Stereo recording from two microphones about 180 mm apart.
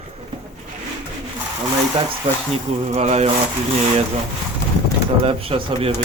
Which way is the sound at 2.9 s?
35° right (ahead or behind).